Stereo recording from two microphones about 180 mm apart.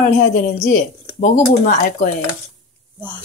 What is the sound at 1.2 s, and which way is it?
Speech, 45° left (ahead or behind).